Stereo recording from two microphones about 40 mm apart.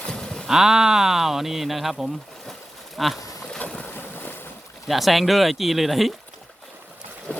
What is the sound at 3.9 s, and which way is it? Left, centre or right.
Boat, left.